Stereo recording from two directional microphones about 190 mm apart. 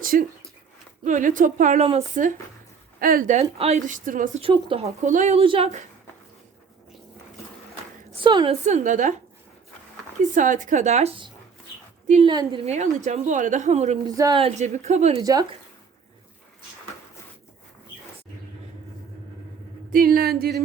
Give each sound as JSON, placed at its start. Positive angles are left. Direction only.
{"t": 0.0, "sound": "a woman's voice", "side_deg": -50}
{"t": 3.0, "sound": "a woman's voice", "side_deg": -50}
{"t": 3.3, "sound": "a woman's voice", "side_deg": -35}
{"t": 4.4, "sound": "a woman's voice", "side_deg": -30}
{"t": 8.1, "sound": "a woman's voice", "side_deg": -25}
{"t": 8.6, "sound": "a woman's voice", "side_deg": -40}
{"t": 10.3, "sound": "a woman's voice", "side_deg": -45}
{"t": 14.2, "sound": "a woman's voice", "side_deg": -25}
{"t": 15.2, "sound": "speech", "side_deg": -20}
{"t": 19.9, "sound": "a woman's voice", "side_deg": -50}